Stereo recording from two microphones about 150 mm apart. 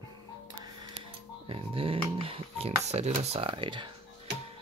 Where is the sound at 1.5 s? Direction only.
40° right (ahead or behind).